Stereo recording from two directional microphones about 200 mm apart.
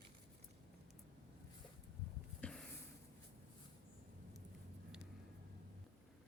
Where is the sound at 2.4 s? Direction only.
5° left (ahead or behind).